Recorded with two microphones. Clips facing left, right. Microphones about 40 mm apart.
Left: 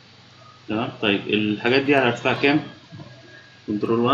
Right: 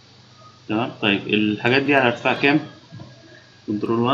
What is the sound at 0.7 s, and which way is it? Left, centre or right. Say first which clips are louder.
Speech: right 1 dB; centre.